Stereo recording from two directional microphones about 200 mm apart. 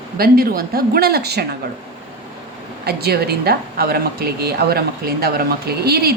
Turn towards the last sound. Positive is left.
turn(degrees=-50)  # may be behind; listen again after turning